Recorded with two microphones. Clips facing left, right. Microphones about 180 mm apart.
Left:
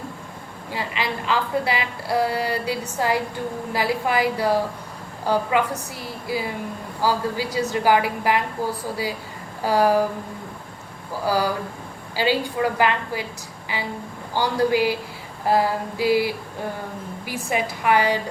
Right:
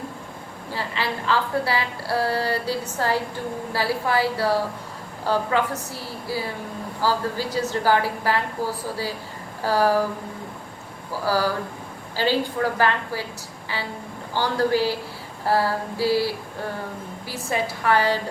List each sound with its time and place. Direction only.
0.7 s a woman's voice: 15° left (ahead or behind)
9.6 s a woman's voice: 15° left (ahead or behind)
11.3 s a woman's voice: 15° left (ahead or behind)
14.3 s a woman's voice: 15° left (ahead or behind)